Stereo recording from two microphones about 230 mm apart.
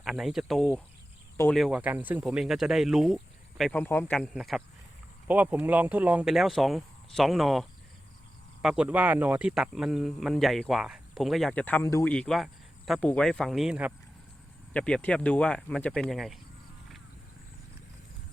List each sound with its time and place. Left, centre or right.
0.0 s speech: centre